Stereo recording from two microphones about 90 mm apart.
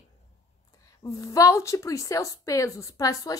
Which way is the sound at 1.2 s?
35° left (ahead or behind).